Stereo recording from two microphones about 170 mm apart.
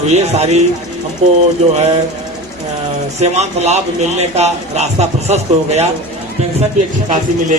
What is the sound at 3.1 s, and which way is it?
Speech, 40° right (ahead or behind).